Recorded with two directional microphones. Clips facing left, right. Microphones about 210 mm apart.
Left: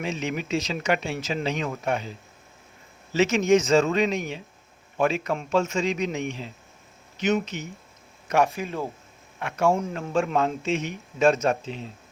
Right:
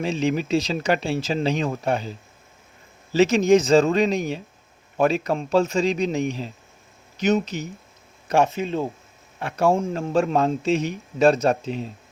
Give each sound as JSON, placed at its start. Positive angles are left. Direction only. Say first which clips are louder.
{"t": 0.0, "sound": "a man's voice", "louder": "right 6 dB", "side_deg": -30}
{"t": 3.1, "sound": "a man's voice", "louder": "right 4 dB", "side_deg": -35}
{"t": 8.3, "sound": "a man's voice", "louder": "right 3 dB", "side_deg": -25}